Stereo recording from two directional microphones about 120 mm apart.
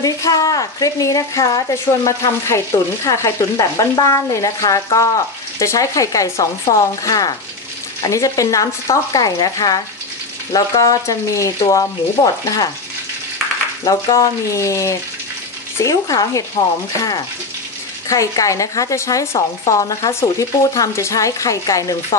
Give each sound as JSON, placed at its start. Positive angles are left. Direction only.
{"t": 0.0, "sound": "a woman's voice", "side_deg": 30}
{"t": 13.8, "sound": "a woman's voice", "side_deg": 30}
{"t": 18.0, "sound": "a woman's voice", "side_deg": 25}